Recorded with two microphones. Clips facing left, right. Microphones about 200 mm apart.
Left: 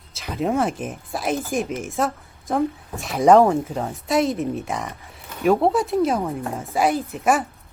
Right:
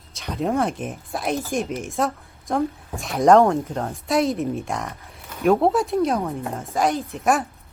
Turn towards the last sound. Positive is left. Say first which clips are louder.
# left 1 dB
turn(degrees=0)  # may be behind; listen again after turning